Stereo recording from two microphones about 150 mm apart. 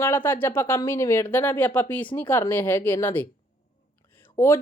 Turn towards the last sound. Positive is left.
turn(degrees=15)  # may be behind; listen again after turning